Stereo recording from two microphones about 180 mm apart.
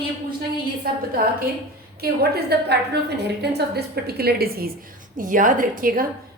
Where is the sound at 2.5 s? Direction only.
60° right (ahead or behind).